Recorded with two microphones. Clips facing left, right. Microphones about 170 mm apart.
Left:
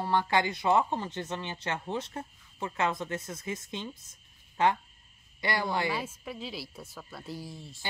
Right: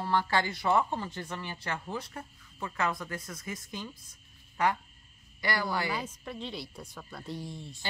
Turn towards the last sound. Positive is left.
turn(degrees=0)  # may be behind; listen again after turning